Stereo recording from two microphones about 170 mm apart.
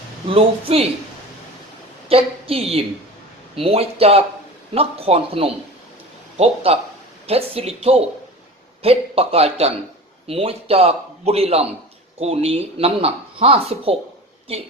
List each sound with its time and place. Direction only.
0.3 s speech: 35° right (ahead or behind)
2.0 s a woman's voice: 35° right (ahead or behind)